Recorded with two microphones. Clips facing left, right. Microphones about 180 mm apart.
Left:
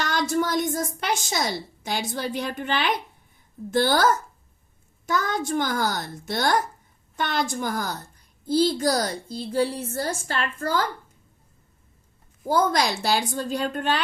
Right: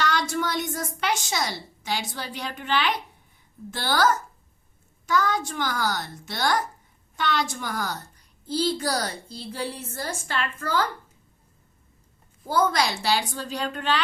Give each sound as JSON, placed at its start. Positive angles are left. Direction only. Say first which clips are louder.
{"t": 0.0, "sound": "speech", "louder": "left 2 dB", "side_deg": 45}
{"t": 12.5, "sound": "speech", "louder": "left 1 dB", "side_deg": 45}